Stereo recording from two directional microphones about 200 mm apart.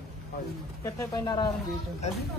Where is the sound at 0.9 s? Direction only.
20° left (ahead or behind).